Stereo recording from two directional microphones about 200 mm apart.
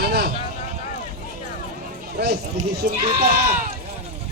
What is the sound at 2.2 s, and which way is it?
Speech, 50° right (ahead or behind).